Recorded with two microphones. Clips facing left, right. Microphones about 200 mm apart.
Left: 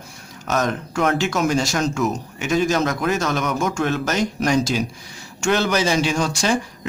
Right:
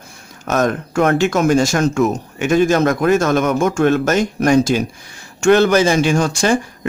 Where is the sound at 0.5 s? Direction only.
50° right (ahead or behind).